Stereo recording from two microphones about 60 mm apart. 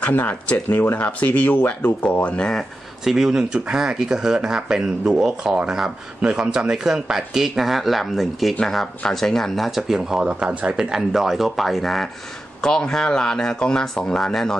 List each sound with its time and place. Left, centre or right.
0.0 s speech: left
2.2 s speech: centre
3.0 s speech: centre
9.7 s speech: centre